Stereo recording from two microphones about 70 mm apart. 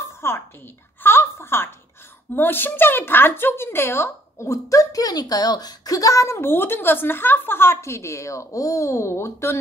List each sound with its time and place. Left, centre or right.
0.2 s a woman's voice: left
1.0 s a sound: left
2.3 s a woman's voice: left